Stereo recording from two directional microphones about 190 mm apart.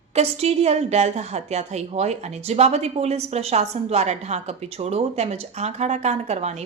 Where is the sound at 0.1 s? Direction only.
35° right (ahead or behind).